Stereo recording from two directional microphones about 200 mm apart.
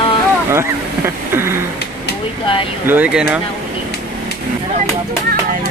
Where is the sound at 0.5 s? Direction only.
10° right (ahead or behind).